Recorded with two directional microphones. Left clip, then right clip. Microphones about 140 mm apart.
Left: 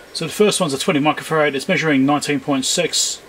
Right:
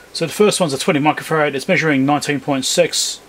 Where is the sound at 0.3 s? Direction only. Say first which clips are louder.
Right 1 dB; 20° right (ahead or behind).